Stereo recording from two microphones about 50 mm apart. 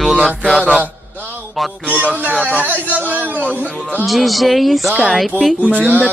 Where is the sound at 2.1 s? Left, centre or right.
Right.